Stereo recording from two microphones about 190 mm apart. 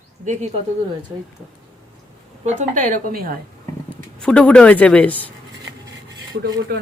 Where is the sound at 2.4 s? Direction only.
40° right (ahead or behind).